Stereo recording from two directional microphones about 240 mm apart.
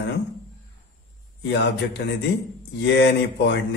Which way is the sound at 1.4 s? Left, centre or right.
Left.